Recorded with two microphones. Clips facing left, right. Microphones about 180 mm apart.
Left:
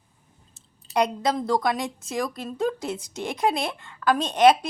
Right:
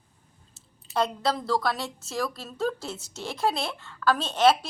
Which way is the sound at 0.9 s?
15° left (ahead or behind).